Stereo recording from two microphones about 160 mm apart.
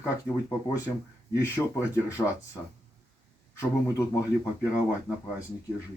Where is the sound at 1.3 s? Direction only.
20° left (ahead or behind).